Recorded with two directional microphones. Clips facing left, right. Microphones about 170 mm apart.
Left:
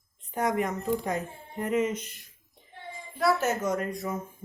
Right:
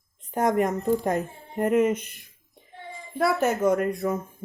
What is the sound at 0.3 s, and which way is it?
Speech, 45° right (ahead or behind).